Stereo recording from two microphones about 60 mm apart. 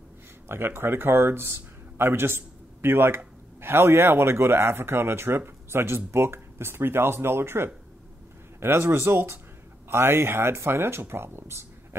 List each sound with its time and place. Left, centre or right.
0.5 s a man's voice: right